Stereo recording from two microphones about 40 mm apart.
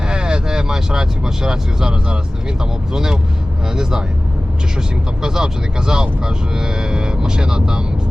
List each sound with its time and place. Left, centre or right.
0.1 s speech: right
5.2 s speech: centre